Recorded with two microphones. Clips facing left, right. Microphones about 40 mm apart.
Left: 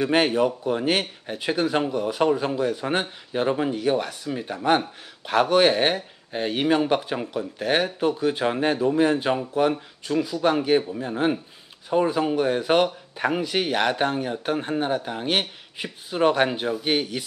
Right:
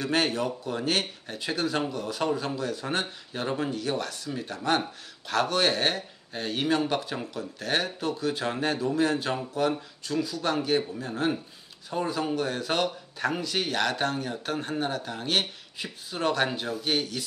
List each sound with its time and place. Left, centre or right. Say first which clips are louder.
0.0 s speech: left 6 dB; centre